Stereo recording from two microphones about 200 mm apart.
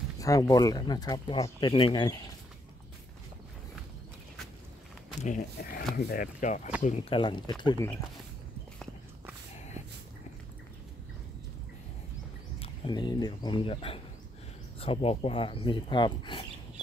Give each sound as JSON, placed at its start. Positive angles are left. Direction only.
{"t": 0.2, "sound": "speech", "side_deg": 20}
{"t": 5.2, "sound": "speech", "side_deg": 40}
{"t": 7.2, "sound": "speech", "side_deg": 20}
{"t": 12.5, "sound": "speech", "side_deg": 25}